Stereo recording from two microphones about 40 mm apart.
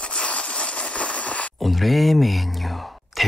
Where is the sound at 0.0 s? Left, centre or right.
Left.